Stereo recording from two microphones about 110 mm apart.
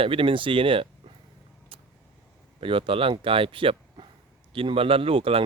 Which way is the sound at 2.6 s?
55° right (ahead or behind).